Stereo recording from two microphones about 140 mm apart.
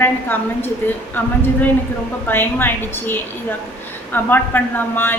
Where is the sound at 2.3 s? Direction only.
15° left (ahead or behind).